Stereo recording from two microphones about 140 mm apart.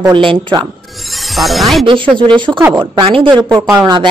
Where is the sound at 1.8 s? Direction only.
35° right (ahead or behind).